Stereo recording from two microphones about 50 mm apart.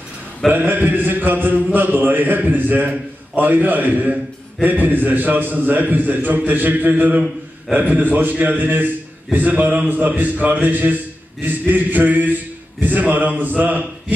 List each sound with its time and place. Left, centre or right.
0.5 s a man's voice: right